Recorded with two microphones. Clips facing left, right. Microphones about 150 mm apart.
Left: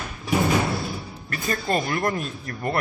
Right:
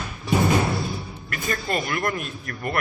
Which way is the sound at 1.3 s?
35° left (ahead or behind).